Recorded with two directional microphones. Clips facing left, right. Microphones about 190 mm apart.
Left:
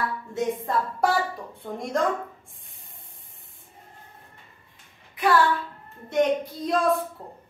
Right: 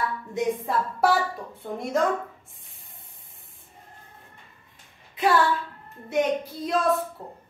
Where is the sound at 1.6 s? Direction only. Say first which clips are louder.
Right 1 dB; 5° right (ahead or behind).